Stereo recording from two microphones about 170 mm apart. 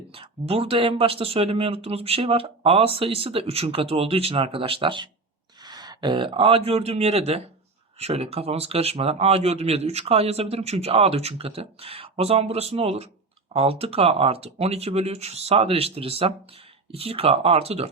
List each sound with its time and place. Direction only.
0.1 s speech: 35° right (ahead or behind)